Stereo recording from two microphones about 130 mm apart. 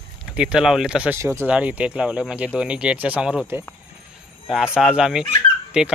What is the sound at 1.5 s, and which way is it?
Speech, 10° right (ahead or behind).